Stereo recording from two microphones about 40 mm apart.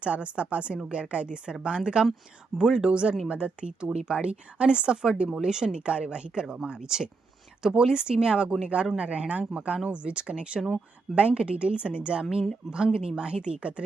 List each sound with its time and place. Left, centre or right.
0.0 s speech: right
12.2 s speech: centre